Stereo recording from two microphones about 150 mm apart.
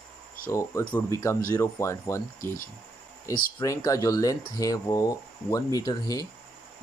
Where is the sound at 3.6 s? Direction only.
20° left (ahead or behind).